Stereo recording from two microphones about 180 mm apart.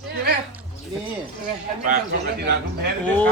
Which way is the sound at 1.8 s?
60° right (ahead or behind).